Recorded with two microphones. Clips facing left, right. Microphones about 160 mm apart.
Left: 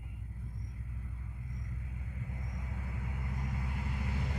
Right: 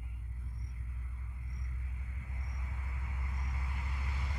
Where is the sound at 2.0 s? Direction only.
55° left (ahead or behind).